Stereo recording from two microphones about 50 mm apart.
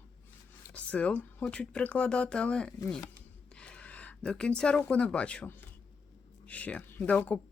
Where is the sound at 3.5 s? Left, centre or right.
Left.